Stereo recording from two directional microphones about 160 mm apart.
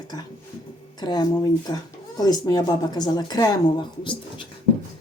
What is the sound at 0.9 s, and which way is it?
Speech, 25° left (ahead or behind).